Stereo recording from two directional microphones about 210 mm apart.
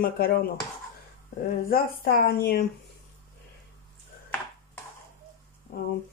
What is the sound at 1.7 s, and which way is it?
Speech, 45° left (ahead or behind).